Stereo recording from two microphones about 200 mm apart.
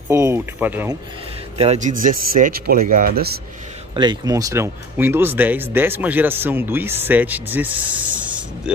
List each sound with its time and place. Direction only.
0.1 s speech: 15° right (ahead or behind)
1.6 s speech: 35° right (ahead or behind)
3.9 s speech: 20° right (ahead or behind); by 8.7 s 5° right (ahead or behind)